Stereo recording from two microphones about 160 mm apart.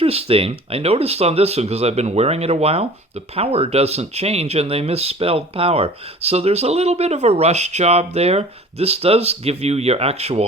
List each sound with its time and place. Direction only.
0.0 s speech: 40° right (ahead or behind)